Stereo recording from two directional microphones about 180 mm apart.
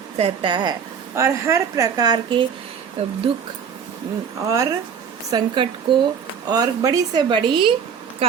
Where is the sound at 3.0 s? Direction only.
35° right (ahead or behind).